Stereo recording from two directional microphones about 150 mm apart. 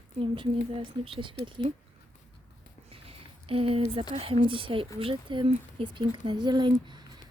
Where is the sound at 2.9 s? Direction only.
40° right (ahead or behind).